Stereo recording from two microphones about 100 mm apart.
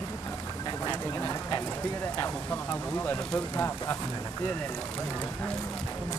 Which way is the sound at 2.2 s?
20° left (ahead or behind).